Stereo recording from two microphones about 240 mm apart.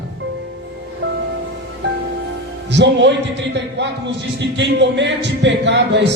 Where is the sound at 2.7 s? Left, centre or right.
Right.